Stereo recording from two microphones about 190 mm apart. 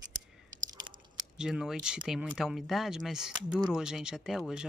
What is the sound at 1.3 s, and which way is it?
Speech, 5° right (ahead or behind).